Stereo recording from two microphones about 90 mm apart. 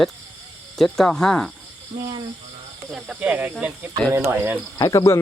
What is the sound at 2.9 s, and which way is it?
Speech, 10° right (ahead or behind).